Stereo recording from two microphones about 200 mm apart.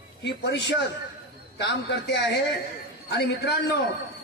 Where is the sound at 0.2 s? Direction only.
60° left (ahead or behind).